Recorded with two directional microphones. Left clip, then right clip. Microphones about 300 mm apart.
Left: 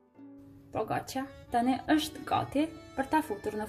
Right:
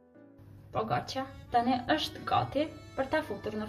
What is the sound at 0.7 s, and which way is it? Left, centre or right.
Speech, left.